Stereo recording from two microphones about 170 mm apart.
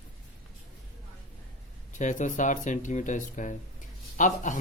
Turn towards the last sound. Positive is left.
turn(degrees=45)  # may be behind; listen again after turning